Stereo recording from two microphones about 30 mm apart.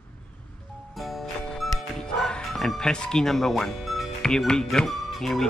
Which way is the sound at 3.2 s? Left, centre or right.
Centre.